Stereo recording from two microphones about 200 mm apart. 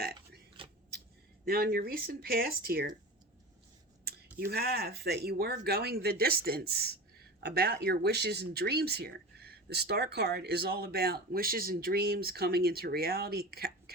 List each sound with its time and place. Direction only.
0.6 s scissors: 25° right (ahead or behind)
1.5 s speech: 50° right (ahead or behind)
4.4 s speech: 50° right (ahead or behind)